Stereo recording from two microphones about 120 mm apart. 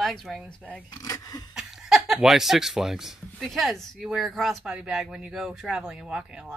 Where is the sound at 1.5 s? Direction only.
5° right (ahead or behind).